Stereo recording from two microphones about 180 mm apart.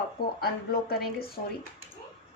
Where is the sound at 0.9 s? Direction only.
60° left (ahead or behind).